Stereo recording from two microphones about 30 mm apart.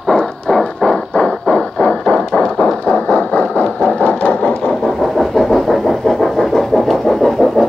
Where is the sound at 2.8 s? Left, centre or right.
Left.